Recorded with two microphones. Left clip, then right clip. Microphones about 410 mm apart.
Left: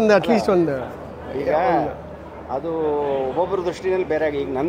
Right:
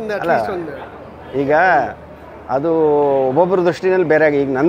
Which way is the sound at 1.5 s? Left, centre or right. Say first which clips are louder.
Right 6 dB; right.